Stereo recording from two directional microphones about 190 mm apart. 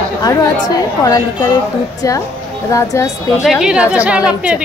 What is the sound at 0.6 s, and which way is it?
Speech, 20° left (ahead or behind).